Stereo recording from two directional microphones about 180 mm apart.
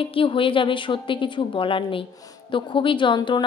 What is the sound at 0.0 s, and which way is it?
Speech, 30° left (ahead or behind).